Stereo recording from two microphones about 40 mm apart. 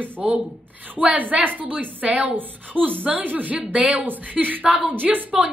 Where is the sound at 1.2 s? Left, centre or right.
Right.